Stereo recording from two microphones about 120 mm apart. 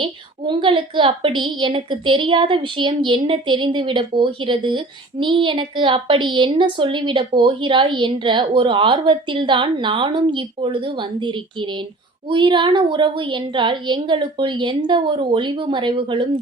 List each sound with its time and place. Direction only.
0.0 s a woman's voice: 45° right (ahead or behind)